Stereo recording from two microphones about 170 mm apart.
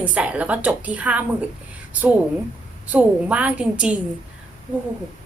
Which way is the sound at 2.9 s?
10° right (ahead or behind).